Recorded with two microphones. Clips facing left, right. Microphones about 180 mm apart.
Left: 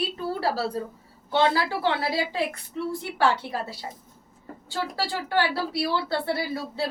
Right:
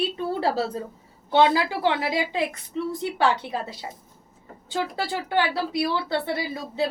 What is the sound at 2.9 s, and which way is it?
A woman's voice, 20° right (ahead or behind).